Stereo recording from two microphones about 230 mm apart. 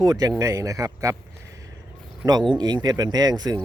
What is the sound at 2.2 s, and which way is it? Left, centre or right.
Speech, centre.